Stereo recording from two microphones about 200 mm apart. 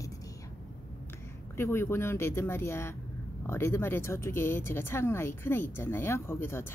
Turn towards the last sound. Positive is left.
turn(degrees=10)  # may be behind; listen again after turning